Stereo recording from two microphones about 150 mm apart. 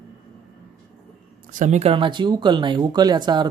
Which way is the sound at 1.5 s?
55° right (ahead or behind).